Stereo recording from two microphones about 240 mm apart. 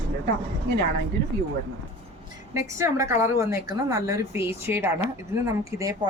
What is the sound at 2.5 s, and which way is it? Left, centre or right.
A woman's voice, centre.